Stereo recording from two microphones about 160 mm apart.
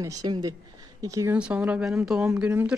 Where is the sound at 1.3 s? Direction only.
5° right (ahead or behind).